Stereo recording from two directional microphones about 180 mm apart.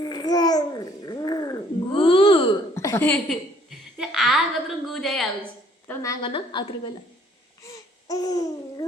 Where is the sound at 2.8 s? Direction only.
15° left (ahead or behind).